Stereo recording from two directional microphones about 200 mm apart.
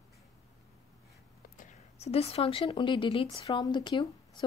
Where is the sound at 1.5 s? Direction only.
35° left (ahead or behind).